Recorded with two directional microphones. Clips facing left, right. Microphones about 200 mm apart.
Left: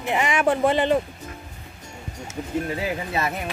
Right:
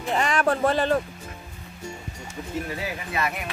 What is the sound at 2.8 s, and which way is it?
Speech, 30° left (ahead or behind).